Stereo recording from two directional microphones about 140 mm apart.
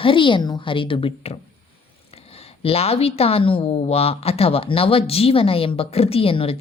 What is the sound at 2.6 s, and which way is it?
Speech, 45° left (ahead or behind).